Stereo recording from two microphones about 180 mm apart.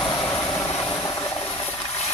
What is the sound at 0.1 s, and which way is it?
Vehicle, 20° left (ahead or behind).